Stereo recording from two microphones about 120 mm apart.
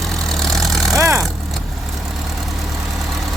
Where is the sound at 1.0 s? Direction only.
25° right (ahead or behind).